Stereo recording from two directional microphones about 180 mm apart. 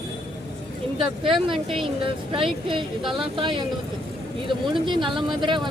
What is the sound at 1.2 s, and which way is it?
A woman's voice, 25° right (ahead or behind).